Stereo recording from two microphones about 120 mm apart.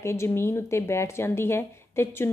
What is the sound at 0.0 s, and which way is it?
A woman's voice, 20° left (ahead or behind).